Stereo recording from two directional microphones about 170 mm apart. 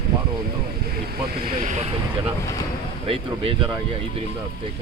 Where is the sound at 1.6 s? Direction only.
45° right (ahead or behind).